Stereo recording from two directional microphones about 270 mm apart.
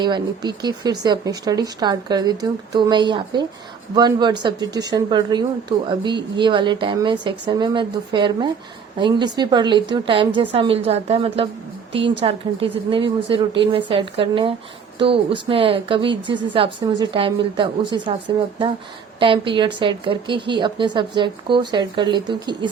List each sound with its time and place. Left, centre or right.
0.0 s a woman's voice: centre
19.2 s a woman's voice: centre